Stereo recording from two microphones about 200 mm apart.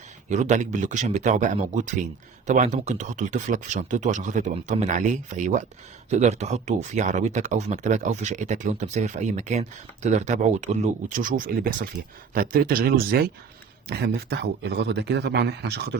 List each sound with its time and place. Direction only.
0.3 s a man's voice: 35° right (ahead or behind); by 16.0 s 55° right (ahead or behind)